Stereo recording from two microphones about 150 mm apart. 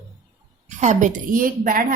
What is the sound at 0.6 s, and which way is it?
Speech, 55° right (ahead or behind).